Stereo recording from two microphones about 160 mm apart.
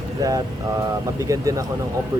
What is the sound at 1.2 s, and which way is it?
Speech, 20° right (ahead or behind).